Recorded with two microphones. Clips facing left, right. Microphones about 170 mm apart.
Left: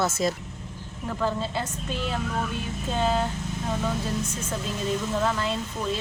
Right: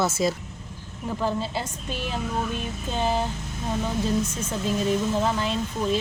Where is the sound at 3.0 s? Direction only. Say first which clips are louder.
Even; 20° right (ahead or behind).